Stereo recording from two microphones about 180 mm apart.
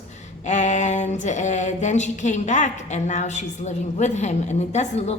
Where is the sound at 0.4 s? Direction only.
40° left (ahead or behind).